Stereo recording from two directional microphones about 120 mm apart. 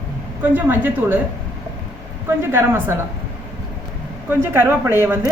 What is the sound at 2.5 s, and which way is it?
Speech, 20° right (ahead or behind).